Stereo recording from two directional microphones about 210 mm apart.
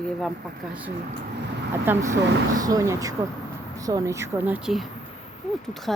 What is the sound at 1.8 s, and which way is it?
Speech, 10° right (ahead or behind).